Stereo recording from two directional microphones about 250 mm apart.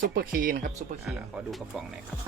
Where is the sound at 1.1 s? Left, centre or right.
Centre.